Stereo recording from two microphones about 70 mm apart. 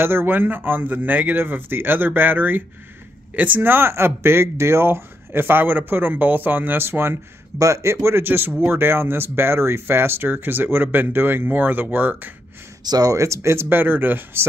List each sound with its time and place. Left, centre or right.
0.0 s speech: right
7.5 s speech: right
12.8 s speech: right